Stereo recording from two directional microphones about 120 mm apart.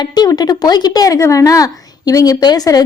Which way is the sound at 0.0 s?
35° left (ahead or behind).